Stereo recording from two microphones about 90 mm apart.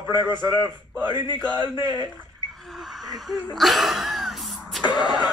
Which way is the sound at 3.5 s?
Centre (ahead or behind).